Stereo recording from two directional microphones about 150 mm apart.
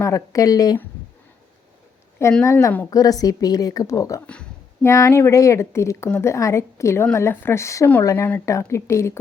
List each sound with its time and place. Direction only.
0.0 s a woman's voice: 20° left (ahead or behind)
2.4 s a woman's voice: 20° left (ahead or behind)
4.3 s a sound: 5° left (ahead or behind)
4.9 s a woman's voice: 20° left (ahead or behind)